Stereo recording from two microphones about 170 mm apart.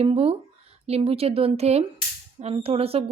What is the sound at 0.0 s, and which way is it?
A woman's voice, 35° right (ahead or behind).